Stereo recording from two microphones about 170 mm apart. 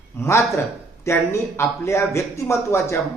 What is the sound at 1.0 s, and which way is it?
Speech, 15° left (ahead or behind).